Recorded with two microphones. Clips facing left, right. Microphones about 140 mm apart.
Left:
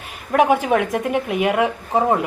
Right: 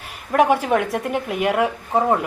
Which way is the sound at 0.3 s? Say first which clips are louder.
Left 1 dB; centre (ahead or behind).